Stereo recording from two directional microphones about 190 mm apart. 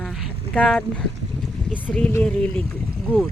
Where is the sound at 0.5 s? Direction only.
5° left (ahead or behind).